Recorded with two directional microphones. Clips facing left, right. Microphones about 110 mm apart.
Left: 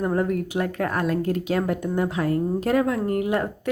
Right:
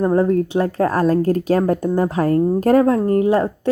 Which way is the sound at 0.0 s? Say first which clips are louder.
Right 7 dB; 30° right (ahead or behind).